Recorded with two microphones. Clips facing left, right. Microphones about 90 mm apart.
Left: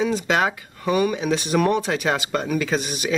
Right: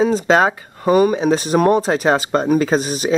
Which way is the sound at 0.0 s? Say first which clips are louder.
Right 7 dB; 35° right (ahead or behind).